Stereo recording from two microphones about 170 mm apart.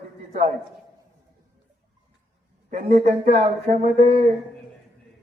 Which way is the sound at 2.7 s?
50° right (ahead or behind).